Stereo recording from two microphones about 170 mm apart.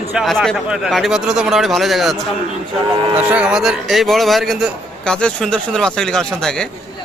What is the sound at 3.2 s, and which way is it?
A man's voice, 5° right (ahead or behind).